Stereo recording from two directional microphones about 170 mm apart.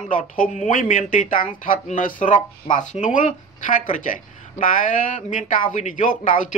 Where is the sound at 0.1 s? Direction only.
50° left (ahead or behind).